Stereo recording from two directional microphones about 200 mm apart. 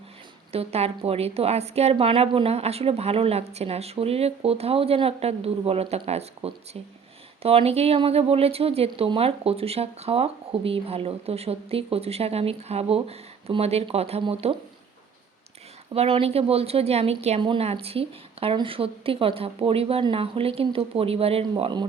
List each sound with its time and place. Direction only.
0.5 s a woman's voice: 30° right (ahead or behind)
16.0 s speech: 30° right (ahead or behind)